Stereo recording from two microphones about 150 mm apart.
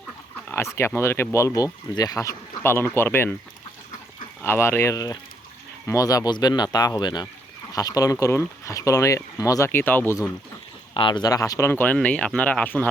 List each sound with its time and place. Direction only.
0.4 s speech: 15° left (ahead or behind)
4.4 s speech: 15° left (ahead or behind)
10.9 s speech: 30° left (ahead or behind); by 12.9 s 10° left (ahead or behind)